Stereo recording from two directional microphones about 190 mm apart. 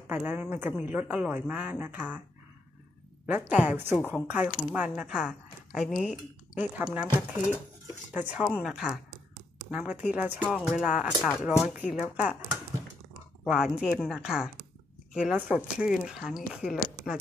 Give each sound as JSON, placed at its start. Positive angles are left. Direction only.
{"t": 0.1, "sound": "speech", "side_deg": -10}
{"t": 3.3, "sound": "speech", "side_deg": -10}
{"t": 9.1, "sound": "a sound", "side_deg": -55}
{"t": 9.7, "sound": "speech", "side_deg": -5}
{"t": 13.5, "sound": "speech", "side_deg": -5}